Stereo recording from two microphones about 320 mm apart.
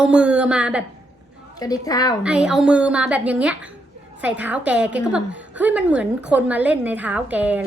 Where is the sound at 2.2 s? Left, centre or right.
Centre.